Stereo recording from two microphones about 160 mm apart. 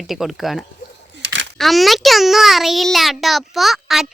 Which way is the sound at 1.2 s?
90° right.